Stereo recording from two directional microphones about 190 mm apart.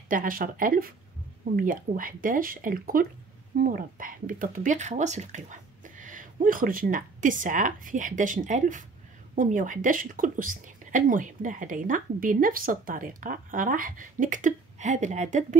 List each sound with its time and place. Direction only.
0.1 s a woman's voice: 45° right (ahead or behind)